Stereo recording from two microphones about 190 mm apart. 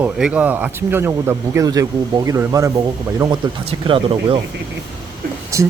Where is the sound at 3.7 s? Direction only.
30° right (ahead or behind).